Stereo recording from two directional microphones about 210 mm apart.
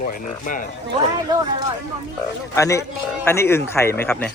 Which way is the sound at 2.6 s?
15° left (ahead or behind).